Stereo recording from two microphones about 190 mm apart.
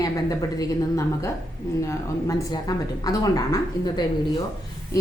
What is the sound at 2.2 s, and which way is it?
A woman's voice, 20° left (ahead or behind).